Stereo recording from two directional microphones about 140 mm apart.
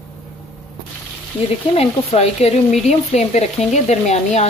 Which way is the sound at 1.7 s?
45° left (ahead or behind).